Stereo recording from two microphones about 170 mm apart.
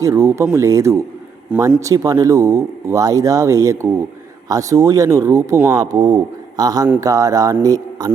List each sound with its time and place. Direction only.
0.0 s a man's voice: 20° right (ahead or behind)